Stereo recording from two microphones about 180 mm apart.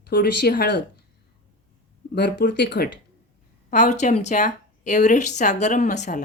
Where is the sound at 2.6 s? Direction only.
65° left (ahead or behind).